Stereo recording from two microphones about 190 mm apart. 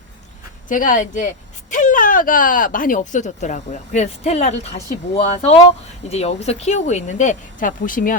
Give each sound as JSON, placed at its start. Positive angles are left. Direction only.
{"t": 0.7, "sound": "speech", "side_deg": 45}